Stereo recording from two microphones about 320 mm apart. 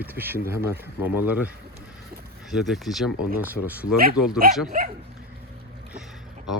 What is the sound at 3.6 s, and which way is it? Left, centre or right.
Speech, left.